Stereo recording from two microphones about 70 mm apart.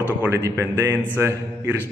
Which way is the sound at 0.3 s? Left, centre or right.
Right.